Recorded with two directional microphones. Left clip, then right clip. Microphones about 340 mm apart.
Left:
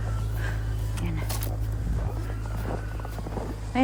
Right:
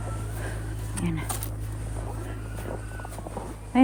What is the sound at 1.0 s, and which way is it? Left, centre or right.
Vehicle, right.